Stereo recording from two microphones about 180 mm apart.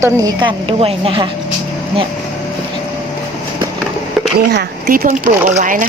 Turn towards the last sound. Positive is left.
turn(degrees=-45)  # may be behind; listen again after turning